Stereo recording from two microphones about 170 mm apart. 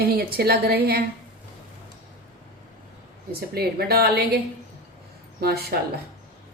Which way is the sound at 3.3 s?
65° right (ahead or behind).